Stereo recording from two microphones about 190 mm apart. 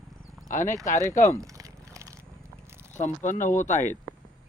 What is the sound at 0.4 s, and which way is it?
Speech, 40° left (ahead or behind).